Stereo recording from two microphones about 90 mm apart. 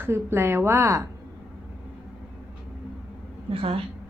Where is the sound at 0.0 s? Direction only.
30° right (ahead or behind).